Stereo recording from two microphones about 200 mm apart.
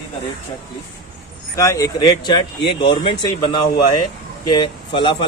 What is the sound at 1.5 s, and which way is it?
A man's voice, 15° left (ahead or behind).